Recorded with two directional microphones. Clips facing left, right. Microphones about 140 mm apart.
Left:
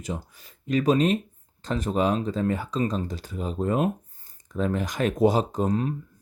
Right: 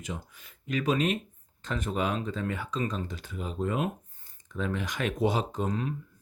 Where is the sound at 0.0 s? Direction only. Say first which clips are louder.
Left 5 dB; 35° left (ahead or behind).